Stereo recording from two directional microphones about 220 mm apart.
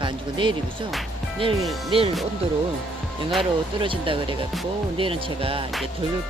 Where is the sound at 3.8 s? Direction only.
25° right (ahead or behind).